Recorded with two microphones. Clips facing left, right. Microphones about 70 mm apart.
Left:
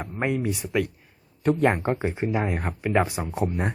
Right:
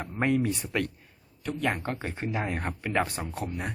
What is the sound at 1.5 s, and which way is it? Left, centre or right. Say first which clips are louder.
Speech: left 9 dB; left.